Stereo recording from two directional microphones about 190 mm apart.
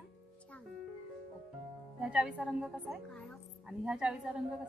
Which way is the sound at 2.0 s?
5° right (ahead or behind).